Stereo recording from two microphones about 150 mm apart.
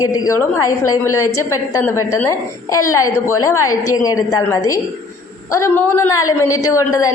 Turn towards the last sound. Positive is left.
turn(degrees=20)  # may be behind; listen again after turning